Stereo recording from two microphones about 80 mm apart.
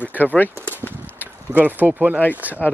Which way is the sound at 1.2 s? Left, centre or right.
Right.